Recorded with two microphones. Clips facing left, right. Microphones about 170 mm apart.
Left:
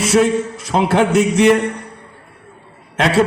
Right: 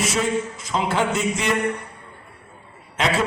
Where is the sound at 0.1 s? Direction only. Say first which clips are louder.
Left 9 dB; 70° left (ahead or behind).